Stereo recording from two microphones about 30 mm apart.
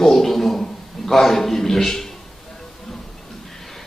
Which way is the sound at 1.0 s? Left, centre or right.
Centre.